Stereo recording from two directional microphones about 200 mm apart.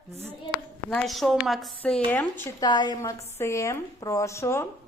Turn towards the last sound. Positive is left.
turn(degrees=15)  # may be behind; listen again after turning